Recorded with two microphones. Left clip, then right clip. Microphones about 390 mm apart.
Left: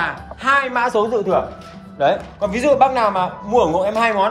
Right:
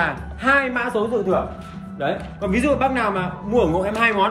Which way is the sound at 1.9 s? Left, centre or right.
Centre.